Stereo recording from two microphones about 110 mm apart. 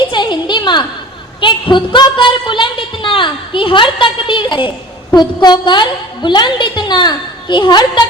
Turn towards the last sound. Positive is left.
turn(degrees=40)  # may be behind; listen again after turning